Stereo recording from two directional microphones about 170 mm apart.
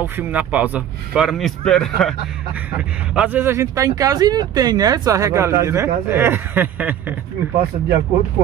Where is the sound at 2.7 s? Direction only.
10° right (ahead or behind).